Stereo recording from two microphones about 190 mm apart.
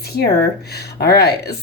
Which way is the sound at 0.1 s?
55° left (ahead or behind).